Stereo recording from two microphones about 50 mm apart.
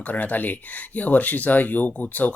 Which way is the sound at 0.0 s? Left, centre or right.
Left.